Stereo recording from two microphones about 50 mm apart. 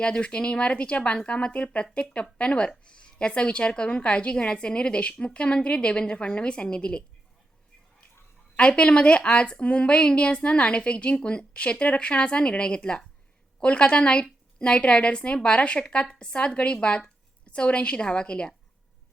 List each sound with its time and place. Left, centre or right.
0.0 s a woman's voice: left
8.5 s a woman's voice: left